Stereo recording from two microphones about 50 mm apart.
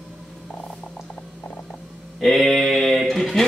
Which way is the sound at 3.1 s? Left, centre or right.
Centre.